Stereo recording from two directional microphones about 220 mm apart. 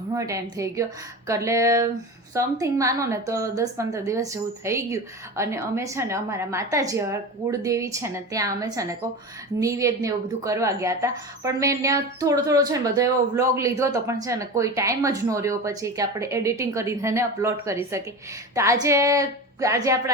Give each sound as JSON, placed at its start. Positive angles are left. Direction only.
{"t": 0.1, "sound": "speech", "side_deg": -15}